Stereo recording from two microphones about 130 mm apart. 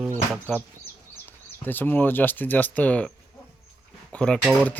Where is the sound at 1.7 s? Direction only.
15° left (ahead or behind).